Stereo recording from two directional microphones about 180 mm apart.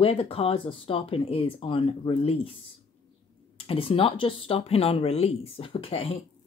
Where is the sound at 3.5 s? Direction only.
30° left (ahead or behind).